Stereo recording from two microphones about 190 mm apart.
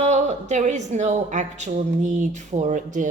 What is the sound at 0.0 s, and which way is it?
A woman's voice, 40° right (ahead or behind).